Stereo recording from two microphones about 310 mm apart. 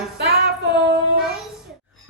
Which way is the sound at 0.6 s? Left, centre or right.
Right.